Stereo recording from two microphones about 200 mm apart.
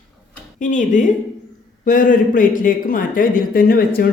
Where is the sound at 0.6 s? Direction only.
40° left (ahead or behind).